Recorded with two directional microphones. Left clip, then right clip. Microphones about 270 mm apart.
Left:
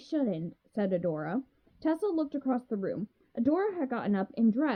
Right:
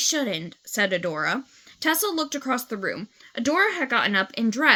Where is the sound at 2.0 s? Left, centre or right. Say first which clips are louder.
Right 5 dB; right.